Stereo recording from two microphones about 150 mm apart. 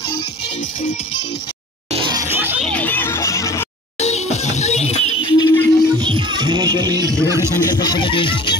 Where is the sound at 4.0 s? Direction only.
45° left (ahead or behind).